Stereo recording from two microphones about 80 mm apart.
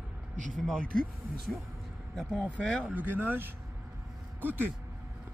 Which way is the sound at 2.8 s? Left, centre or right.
Right.